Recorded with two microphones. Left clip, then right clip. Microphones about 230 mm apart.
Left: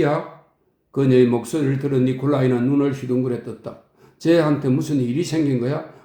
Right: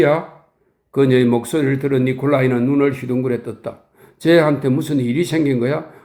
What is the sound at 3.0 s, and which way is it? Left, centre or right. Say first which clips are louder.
Speech: right 2 dB; right.